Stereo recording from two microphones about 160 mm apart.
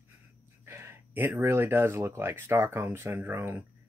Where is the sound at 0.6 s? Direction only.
15° right (ahead or behind).